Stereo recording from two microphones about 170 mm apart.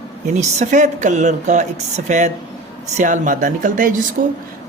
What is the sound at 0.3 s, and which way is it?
Speech, 45° right (ahead or behind).